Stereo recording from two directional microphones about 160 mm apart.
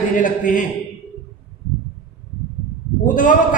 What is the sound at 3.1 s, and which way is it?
Speech, 55° left (ahead or behind).